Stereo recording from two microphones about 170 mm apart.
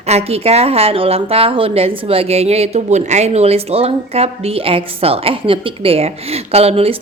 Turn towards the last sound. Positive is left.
turn(degrees=-35)  # may be behind; listen again after turning